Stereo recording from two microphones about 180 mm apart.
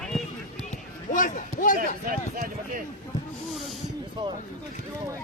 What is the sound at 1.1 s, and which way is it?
Speech, 45° left (ahead or behind).